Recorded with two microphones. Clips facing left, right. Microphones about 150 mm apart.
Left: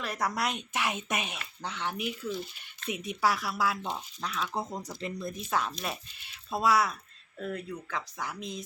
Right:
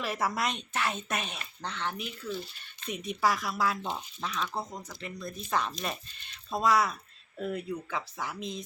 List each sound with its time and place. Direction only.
0.0 s speech: 5° right (ahead or behind)
4.9 s speech: 30° left (ahead or behind)
5.5 s speech: 5° left (ahead or behind)